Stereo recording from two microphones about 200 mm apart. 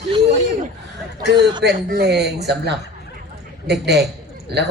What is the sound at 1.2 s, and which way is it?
A man's voice, 60° right (ahead or behind).